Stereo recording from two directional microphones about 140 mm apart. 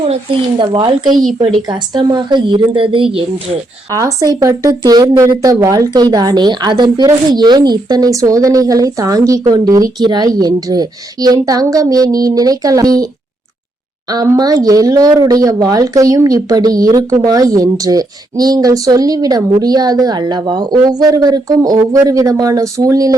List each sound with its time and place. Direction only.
0.6 s a woman's voice: 35° right (ahead or behind)
3.9 s speech: 25° right (ahead or behind)
14.1 s speech: 25° right (ahead or behind)